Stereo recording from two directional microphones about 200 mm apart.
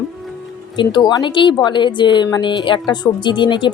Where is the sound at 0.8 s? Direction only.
20° left (ahead or behind).